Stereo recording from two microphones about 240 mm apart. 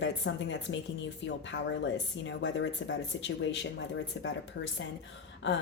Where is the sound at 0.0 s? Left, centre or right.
Left.